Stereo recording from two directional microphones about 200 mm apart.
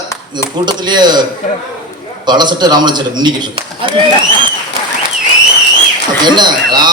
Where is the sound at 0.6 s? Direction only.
20° right (ahead or behind).